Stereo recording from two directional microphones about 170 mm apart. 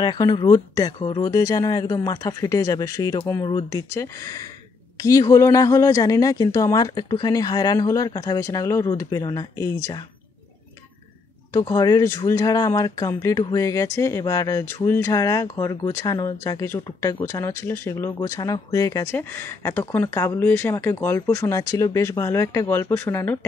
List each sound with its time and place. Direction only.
0.0 s speech: 25° left (ahead or behind)
11.5 s speech: 20° left (ahead or behind)